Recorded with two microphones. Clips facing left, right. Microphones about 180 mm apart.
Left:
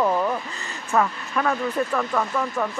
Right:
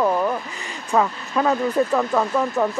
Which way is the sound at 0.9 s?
20° right (ahead or behind).